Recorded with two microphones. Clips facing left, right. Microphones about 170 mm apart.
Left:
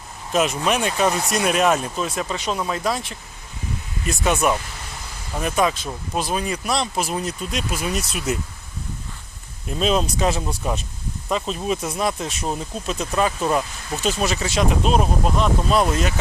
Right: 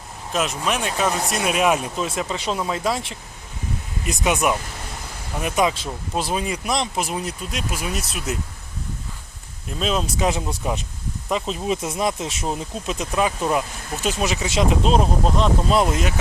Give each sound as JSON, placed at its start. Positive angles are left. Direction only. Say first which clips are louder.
{"t": 0.3, "sound": "speech", "louder": "left 3 dB", "side_deg": 0}
{"t": 2.0, "sound": "speech", "louder": "even", "side_deg": -25}
{"t": 9.6, "sound": "speech", "louder": "left 3 dB", "side_deg": 0}
{"t": 10.2, "sound": "speech", "louder": "even", "side_deg": -15}